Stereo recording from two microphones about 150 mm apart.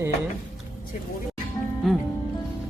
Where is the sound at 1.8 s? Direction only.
Centre (ahead or behind).